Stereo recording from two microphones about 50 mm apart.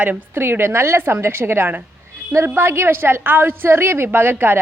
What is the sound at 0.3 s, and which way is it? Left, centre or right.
A woman's voice, right.